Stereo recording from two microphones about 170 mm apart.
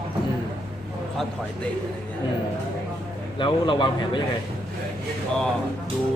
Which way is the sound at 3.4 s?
30° left (ahead or behind).